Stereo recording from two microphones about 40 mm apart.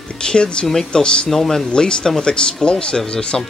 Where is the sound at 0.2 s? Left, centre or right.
Left.